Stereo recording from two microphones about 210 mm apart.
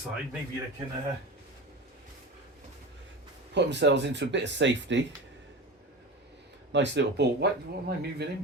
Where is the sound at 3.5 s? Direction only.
55° right (ahead or behind).